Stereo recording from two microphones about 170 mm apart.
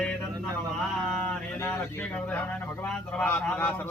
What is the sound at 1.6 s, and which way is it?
A man's voice, 10° left (ahead or behind).